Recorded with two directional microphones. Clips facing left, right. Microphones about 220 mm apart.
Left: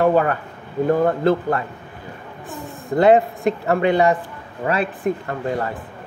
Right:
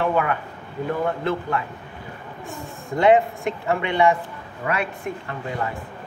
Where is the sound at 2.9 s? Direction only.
35° left (ahead or behind).